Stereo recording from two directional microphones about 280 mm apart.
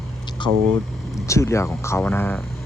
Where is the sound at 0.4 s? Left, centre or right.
Centre.